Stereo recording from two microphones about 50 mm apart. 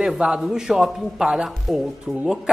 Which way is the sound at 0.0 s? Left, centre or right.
Centre.